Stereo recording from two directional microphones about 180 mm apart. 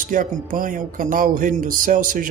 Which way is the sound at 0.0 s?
50° right (ahead or behind).